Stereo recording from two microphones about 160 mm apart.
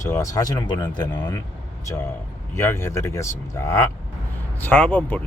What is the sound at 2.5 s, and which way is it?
Speech, 15° left (ahead or behind).